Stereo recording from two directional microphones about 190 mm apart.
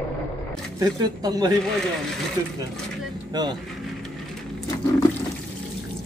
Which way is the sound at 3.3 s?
20° right (ahead or behind).